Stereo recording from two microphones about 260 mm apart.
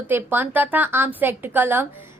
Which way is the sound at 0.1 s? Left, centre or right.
Centre.